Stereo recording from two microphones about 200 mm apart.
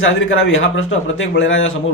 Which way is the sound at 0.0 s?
85° left.